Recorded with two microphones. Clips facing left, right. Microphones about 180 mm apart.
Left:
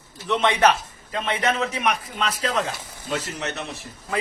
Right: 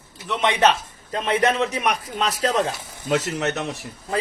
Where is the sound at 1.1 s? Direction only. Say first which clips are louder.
Right 4 dB; 40° right (ahead or behind).